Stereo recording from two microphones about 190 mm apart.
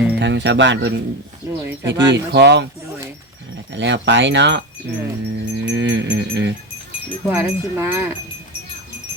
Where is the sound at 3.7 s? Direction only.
70° right (ahead or behind).